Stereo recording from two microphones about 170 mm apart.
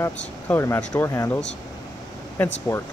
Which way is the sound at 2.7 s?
15° left (ahead or behind).